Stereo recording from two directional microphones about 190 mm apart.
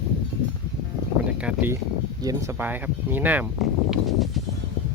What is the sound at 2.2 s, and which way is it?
Speech, 15° right (ahead or behind).